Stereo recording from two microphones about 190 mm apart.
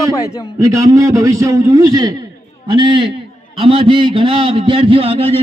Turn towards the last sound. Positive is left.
turn(degrees=-30)  # may be behind; listen again after turning